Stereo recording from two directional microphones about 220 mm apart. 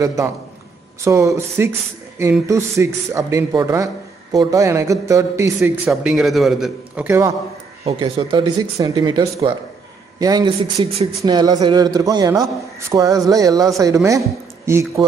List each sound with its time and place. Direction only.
0.0 s a man's voice: 15° right (ahead or behind)
5.9 s a man's voice: centre (ahead or behind)
7.8 s a man's voice: 20° right (ahead or behind)